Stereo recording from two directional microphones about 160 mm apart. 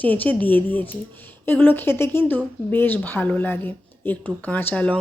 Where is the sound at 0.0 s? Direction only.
10° left (ahead or behind).